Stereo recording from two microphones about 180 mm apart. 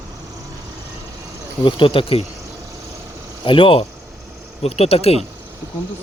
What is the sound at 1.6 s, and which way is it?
Speech, 30° left (ahead or behind).